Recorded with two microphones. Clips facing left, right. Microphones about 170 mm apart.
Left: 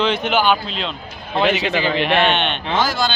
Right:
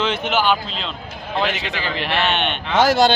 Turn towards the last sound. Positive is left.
turn(degrees=-70)  # may be behind; listen again after turning